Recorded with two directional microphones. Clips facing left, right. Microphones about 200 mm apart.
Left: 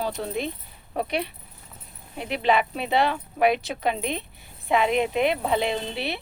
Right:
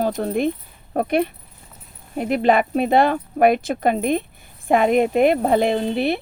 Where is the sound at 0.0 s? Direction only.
50° right (ahead or behind).